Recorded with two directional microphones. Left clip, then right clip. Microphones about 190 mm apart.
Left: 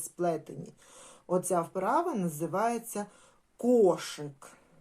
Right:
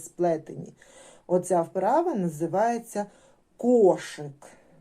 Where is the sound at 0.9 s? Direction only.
25° right (ahead or behind).